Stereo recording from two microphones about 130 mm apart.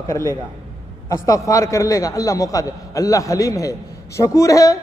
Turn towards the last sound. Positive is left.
turn(degrees=25)  # may be behind; listen again after turning